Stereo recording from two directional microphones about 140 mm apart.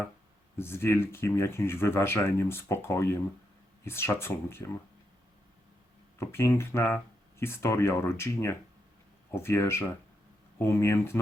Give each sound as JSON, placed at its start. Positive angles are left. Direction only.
{"t": 0.6, "sound": "speech", "side_deg": 15}
{"t": 6.1, "sound": "speech", "side_deg": 20}